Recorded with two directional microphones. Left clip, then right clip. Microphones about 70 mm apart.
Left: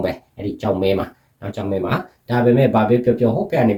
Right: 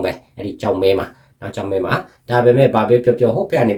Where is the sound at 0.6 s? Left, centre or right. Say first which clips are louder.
Right 4 dB; right.